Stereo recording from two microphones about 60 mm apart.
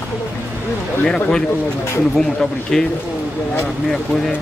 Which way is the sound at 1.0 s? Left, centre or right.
Centre.